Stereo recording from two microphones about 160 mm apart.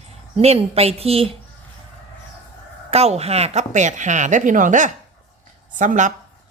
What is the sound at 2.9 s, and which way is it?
A woman's voice, 40° right (ahead or behind).